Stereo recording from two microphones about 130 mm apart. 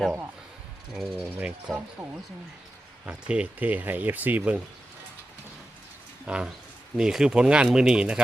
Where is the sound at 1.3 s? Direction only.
10° right (ahead or behind).